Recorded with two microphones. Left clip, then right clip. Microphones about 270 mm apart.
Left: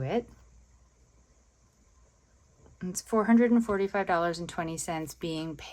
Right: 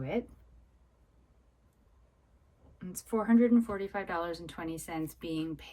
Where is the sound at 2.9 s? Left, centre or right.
Left.